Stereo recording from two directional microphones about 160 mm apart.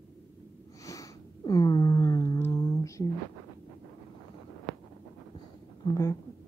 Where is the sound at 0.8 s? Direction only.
20° left (ahead or behind).